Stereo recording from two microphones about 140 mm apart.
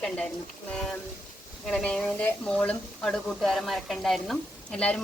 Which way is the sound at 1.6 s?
10° left (ahead or behind).